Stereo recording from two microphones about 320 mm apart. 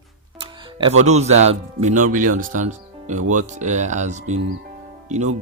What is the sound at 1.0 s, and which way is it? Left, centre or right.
Speech, right.